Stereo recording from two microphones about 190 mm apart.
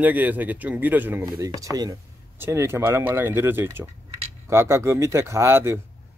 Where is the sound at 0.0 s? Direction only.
10° right (ahead or behind).